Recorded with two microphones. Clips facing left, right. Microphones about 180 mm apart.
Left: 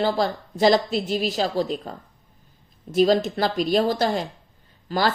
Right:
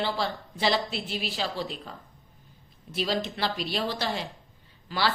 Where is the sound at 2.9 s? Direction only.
45° left (ahead or behind).